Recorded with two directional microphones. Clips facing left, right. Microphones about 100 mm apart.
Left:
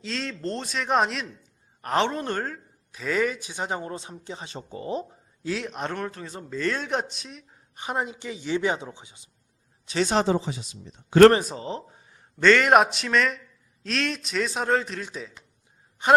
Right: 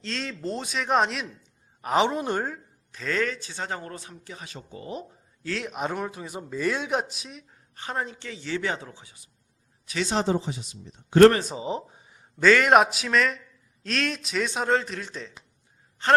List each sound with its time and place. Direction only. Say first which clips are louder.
0.0 s a man's voice: left 1 dB; centre (ahead or behind)
2.9 s speech: left 2 dB; 10° left (ahead or behind); by 5.0 s 30° left (ahead or behind)
5.5 s speech: right 4 dB; 5° right (ahead or behind)
7.8 s speech: left 2 dB; 15° left (ahead or behind)
11.4 s a man's voice: right 2 dB; 10° right (ahead or behind); by 16.1 s 15° left (ahead or behind)